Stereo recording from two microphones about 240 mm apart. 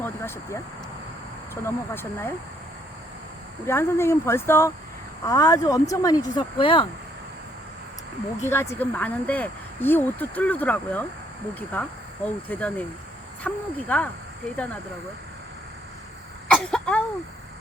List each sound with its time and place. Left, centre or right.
0.0 s a sound: centre
1.6 s speech: centre
3.7 s speech: centre
8.7 s speech: centre
16.5 s throat clearing: centre